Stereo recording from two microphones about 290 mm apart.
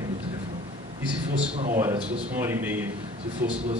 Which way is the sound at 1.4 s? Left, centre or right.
Right.